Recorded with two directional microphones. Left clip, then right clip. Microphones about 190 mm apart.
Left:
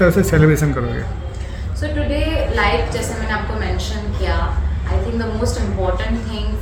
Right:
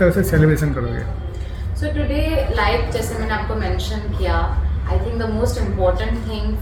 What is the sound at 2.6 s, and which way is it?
Speech, centre (ahead or behind).